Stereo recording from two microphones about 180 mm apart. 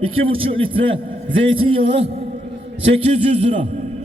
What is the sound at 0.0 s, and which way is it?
Speech, 30° right (ahead or behind).